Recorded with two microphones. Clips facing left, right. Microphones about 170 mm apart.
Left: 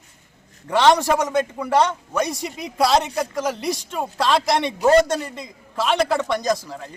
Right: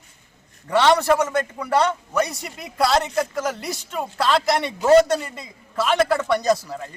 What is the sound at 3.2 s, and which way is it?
Speech, centre (ahead or behind).